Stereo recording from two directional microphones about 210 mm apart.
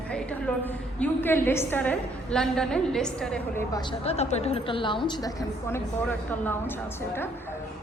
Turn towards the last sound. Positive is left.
turn(degrees=10)  # may be behind; listen again after turning